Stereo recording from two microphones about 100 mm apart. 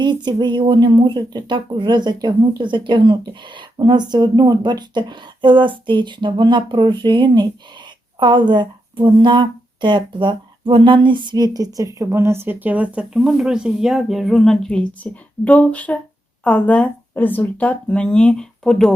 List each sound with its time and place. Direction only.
0.0 s speech: 50° right (ahead or behind); by 18.9 s 5° left (ahead or behind)